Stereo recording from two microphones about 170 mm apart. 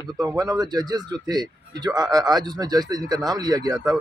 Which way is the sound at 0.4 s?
20° right (ahead or behind).